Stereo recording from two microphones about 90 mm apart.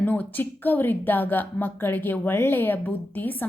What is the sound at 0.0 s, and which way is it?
A woman's voice, 20° left (ahead or behind).